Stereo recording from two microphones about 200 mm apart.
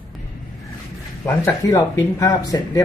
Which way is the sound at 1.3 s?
15° left (ahead or behind).